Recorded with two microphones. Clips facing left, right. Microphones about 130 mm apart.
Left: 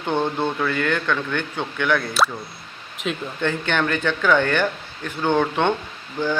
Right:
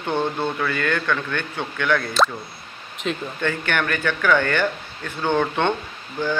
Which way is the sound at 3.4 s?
15° left (ahead or behind).